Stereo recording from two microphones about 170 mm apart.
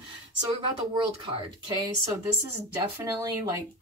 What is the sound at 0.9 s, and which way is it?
Speech, 25° right (ahead or behind).